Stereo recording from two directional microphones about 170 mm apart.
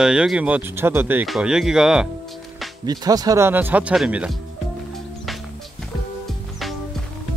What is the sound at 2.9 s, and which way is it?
Speech, 20° right (ahead or behind).